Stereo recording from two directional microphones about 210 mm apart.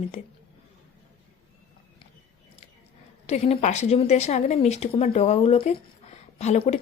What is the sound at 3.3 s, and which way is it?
Speech, 30° left (ahead or behind).